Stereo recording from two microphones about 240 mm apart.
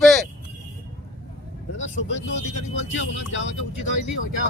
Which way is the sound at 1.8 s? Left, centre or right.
Left.